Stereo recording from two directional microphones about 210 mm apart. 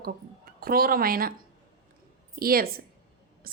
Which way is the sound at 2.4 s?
45° right (ahead or behind).